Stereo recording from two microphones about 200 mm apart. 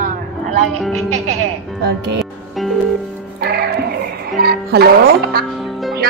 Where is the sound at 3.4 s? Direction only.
55° right (ahead or behind).